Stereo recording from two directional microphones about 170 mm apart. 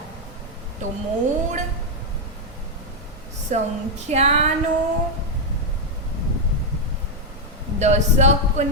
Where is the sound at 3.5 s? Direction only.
45° right (ahead or behind).